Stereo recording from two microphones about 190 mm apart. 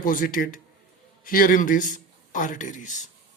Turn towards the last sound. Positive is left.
turn(degrees=40)  # may be behind; listen again after turning